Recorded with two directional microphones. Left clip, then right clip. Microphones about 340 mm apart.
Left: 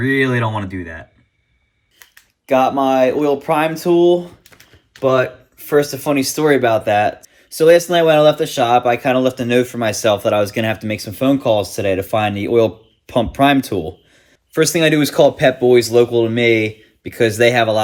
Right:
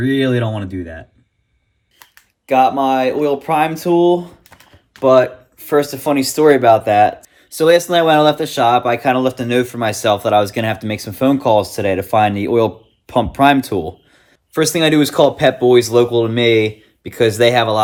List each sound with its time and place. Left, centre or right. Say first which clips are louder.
2.5 s speech: right 1 dB; centre
4.5 s typing: right 1 dB; right
5.1 s speech: right 5 dB; centre